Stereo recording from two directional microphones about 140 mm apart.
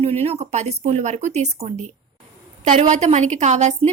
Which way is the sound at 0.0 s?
45° right (ahead or behind).